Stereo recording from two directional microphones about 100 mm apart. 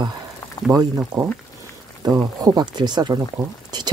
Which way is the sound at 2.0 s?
40° right (ahead or behind).